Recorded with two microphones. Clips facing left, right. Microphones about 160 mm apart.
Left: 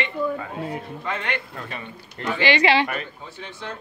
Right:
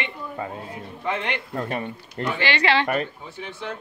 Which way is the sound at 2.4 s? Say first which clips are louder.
Left 3 dB; 15° left (ahead or behind).